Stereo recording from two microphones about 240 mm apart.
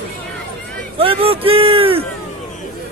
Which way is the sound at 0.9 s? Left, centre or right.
Right.